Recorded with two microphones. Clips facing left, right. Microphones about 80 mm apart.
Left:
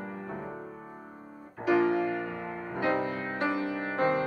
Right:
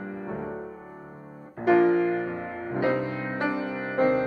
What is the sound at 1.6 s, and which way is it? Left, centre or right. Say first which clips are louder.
Music: right 5 dB; right.